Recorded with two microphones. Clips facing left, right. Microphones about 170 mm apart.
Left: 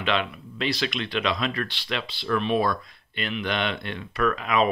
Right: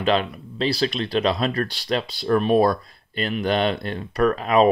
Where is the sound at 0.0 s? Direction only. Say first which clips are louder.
Right 5 dB; 40° right (ahead or behind).